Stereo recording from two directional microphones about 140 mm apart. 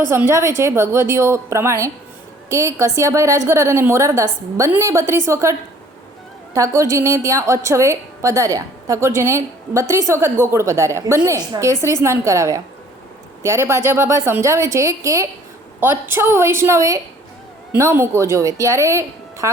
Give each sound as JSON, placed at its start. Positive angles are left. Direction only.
{"t": 0.0, "sound": "a woman's voice", "side_deg": -15}